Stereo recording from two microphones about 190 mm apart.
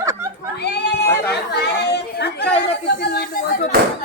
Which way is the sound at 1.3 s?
60° left (ahead or behind).